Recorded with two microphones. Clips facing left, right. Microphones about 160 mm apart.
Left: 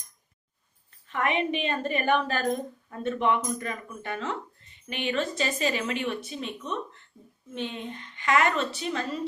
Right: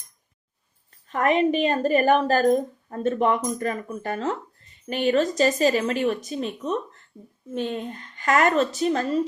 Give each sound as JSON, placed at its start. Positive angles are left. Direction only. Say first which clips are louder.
{"t": 1.0, "sound": "a woman's voice", "louder": "right 7 dB", "side_deg": -40}